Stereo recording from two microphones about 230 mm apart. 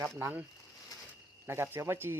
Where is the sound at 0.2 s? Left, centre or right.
Centre.